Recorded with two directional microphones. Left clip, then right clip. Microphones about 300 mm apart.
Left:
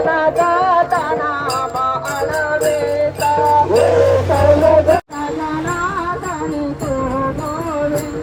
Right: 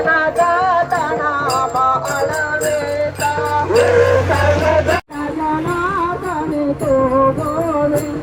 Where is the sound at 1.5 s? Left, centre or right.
Centre.